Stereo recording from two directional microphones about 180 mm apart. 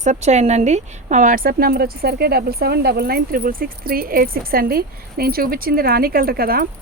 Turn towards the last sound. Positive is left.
turn(degrees=-55)  # may be behind; listen again after turning